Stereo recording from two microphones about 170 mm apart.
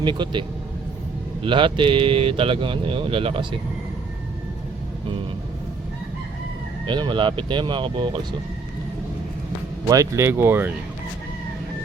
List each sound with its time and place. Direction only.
0.0 s speech: 30° right (ahead or behind)
6.8 s speech: 25° right (ahead or behind)
9.9 s speech: 15° right (ahead or behind)